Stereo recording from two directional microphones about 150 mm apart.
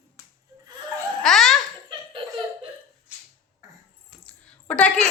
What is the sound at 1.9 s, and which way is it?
Laughter, 35° right (ahead or behind).